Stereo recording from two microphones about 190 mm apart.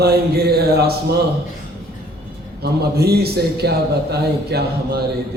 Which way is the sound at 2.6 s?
55° right (ahead or behind).